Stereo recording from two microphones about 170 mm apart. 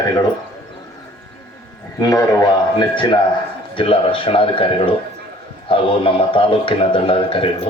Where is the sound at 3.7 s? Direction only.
30° left (ahead or behind).